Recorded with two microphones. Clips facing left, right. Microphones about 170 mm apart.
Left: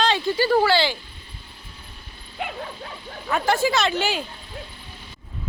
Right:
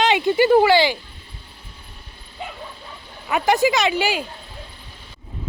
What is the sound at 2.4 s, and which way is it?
Bow-wow, 70° left (ahead or behind).